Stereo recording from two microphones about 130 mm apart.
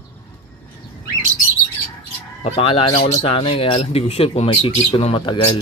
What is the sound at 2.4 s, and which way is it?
Speech, 45° left (ahead or behind).